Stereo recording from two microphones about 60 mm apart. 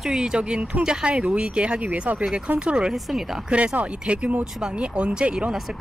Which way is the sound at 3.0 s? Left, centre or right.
Centre.